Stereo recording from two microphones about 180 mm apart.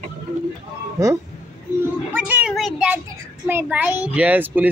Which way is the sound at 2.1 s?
10° right (ahead or behind).